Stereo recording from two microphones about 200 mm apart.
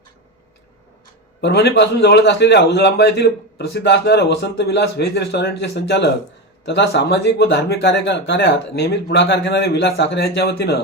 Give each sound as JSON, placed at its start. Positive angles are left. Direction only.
{"t": 1.4, "sound": "a man's voice", "side_deg": 55}